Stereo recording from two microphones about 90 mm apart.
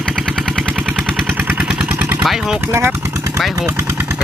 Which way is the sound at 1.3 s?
20° right (ahead or behind).